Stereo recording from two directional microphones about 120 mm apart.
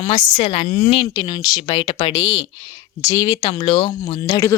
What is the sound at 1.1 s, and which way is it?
Speech, 35° left (ahead or behind).